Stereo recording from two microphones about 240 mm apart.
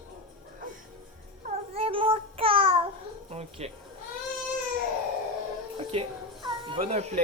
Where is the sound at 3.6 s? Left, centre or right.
Right.